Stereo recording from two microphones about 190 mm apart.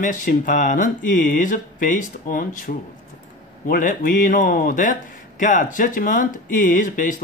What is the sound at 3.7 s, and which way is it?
Speech, 45° left (ahead or behind).